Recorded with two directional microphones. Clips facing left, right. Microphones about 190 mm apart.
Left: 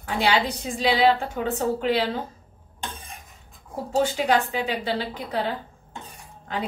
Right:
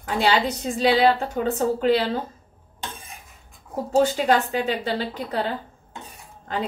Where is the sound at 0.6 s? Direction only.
40° right (ahead or behind).